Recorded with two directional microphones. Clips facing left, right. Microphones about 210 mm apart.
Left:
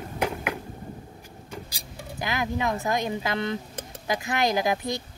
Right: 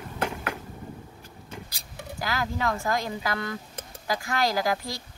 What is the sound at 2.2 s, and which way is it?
Speech, 20° left (ahead or behind).